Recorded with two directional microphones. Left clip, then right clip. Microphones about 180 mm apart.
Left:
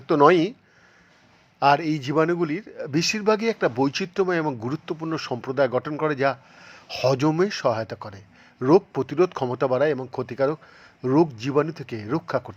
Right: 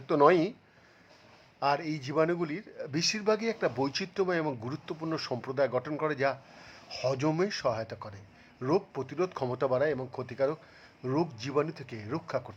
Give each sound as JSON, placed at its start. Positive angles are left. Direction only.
{"t": 0.1, "sound": "a man's voice", "side_deg": 20}
{"t": 1.5, "sound": "a man's voice", "side_deg": 20}